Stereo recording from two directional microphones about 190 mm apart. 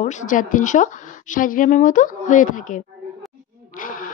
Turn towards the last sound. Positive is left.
turn(degrees=45)  # may be behind; listen again after turning